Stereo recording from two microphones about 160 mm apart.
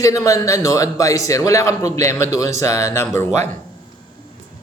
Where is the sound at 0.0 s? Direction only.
20° left (ahead or behind).